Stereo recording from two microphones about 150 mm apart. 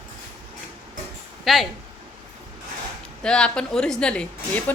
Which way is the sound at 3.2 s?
5° left (ahead or behind).